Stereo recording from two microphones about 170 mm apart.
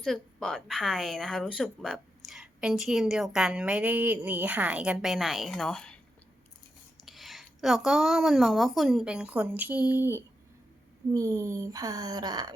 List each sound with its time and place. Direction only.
0.0 s a woman's voice: 5° left (ahead or behind)
7.0 s a woman's voice: centre (ahead or behind); by 12.5 s 25° right (ahead or behind)